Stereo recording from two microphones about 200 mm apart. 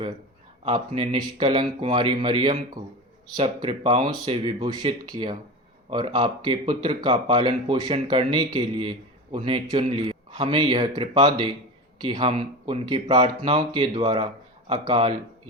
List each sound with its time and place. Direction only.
0.6 s speech: 25° right (ahead or behind)